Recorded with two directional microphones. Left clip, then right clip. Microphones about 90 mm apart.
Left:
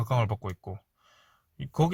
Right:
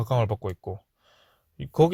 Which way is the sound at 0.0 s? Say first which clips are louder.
Right 4 dB; 35° right (ahead or behind).